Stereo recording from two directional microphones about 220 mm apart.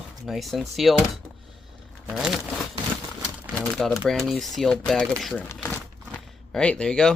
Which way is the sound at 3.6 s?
Centre (ahead or behind).